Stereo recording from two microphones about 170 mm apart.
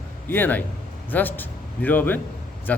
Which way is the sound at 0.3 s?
10° left (ahead or behind).